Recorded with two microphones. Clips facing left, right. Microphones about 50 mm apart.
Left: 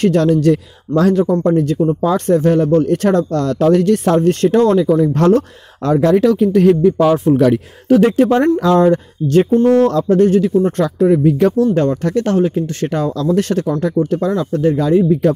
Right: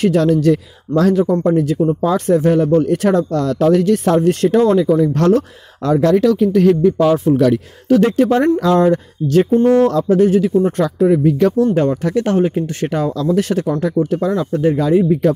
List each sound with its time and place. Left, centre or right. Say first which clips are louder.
0.0 s speech: left 1 dB; centre
1.4 s speech: left 1 dB; centre
5.0 s speech: left 1 dB; centre
5.3 s speech: left 1 dB; centre
7.3 s speech: left 1 dB; left
8.0 s speech: left 1 dB; centre
9.5 s speech: even; centre
11.2 s speech: left 1 dB; centre
11.7 s speech: even; centre
15.2 s speech: even; centre